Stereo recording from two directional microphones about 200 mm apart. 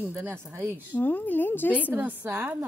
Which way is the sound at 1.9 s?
10° right (ahead or behind).